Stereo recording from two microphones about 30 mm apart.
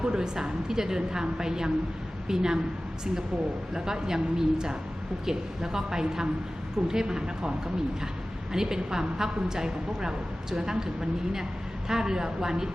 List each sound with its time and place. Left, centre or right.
0.0 s a woman's voice: right
3.8 s a woman's voice: right
8.5 s a woman's voice: centre